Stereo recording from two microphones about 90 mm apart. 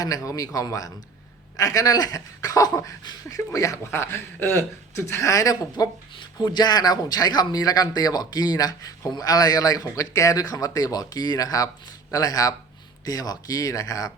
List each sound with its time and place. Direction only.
0.0 s speech: 40° left (ahead or behind)
6.1 s speech: 55° left (ahead or behind)